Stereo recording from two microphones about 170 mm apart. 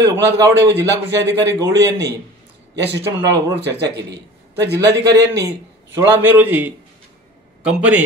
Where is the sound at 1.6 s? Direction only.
20° right (ahead or behind).